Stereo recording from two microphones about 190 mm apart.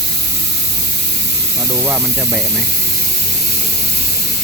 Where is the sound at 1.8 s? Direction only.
5° right (ahead or behind).